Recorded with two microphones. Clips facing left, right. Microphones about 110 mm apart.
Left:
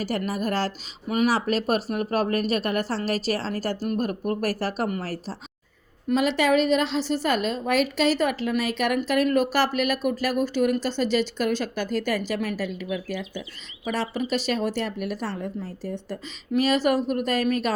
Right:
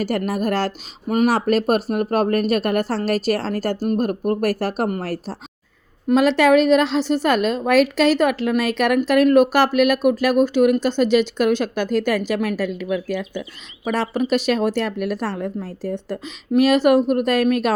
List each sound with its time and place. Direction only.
0.3 s speech: 65° right (ahead or behind)
1.0 s speech: 45° right (ahead or behind)
6.1 s speech: 80° right